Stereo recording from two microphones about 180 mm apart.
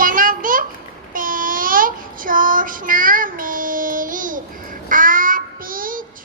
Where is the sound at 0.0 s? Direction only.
50° right (ahead or behind).